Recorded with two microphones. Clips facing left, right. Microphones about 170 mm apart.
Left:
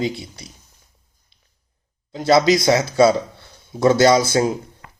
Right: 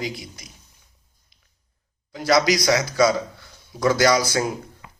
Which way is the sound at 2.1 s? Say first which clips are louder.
Left 4 dB; 25° left (ahead or behind).